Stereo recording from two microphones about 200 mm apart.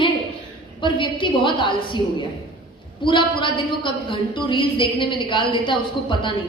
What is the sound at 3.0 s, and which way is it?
A woman's voice, 25° left (ahead or behind).